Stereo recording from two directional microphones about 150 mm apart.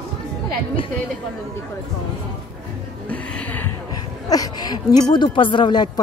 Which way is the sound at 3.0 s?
10° left (ahead or behind).